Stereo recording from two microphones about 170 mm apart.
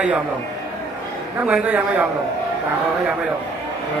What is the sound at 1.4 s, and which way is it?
Speech, 10° right (ahead or behind).